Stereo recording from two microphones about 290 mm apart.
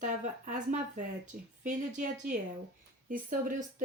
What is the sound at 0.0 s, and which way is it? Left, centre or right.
Speech, right.